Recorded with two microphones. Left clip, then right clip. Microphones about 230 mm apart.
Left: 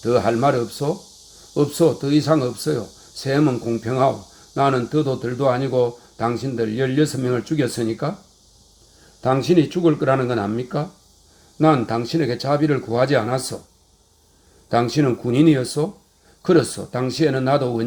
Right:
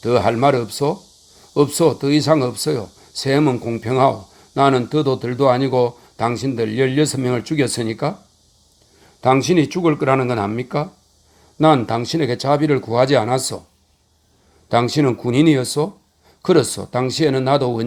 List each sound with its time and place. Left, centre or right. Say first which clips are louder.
0.0 s a man's voice: right 2 dB; right
9.2 s a man's voice: right 2 dB; right
14.7 s speech: right 2 dB; right